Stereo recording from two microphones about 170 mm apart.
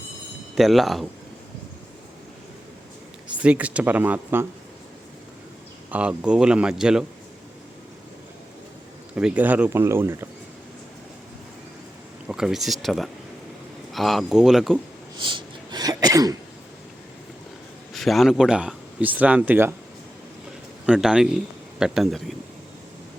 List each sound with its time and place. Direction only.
0.5 s speech: centre (ahead or behind)
3.3 s speech: 5° right (ahead or behind)
5.9 s speech: 5° right (ahead or behind)
9.1 s speech: 10° right (ahead or behind)
12.3 s speech: 5° right (ahead or behind)
15.2 s cough: 30° right (ahead or behind)
17.9 s speech: centre (ahead or behind)
20.8 s a man's voice: 5° right (ahead or behind)